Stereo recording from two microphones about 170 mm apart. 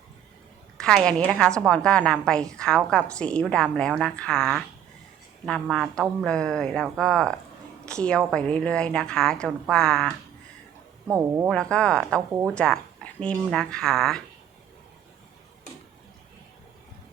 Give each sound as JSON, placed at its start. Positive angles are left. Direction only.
{"t": 0.8, "sound": "a woman's voice", "side_deg": 5}
{"t": 11.4, "sound": "a woman's voice", "side_deg": 5}
{"t": 12.3, "sound": "speech", "side_deg": -15}
{"t": 12.5, "sound": "a woman's voice", "side_deg": 5}